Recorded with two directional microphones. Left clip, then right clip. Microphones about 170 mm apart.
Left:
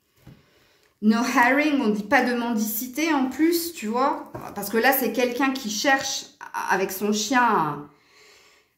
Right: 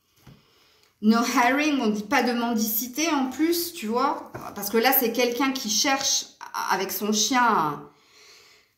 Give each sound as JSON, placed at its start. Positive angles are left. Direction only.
{"t": 1.0, "sound": "a woman's voice", "side_deg": 45}